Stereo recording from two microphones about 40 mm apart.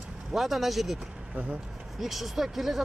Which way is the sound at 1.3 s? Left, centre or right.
Right.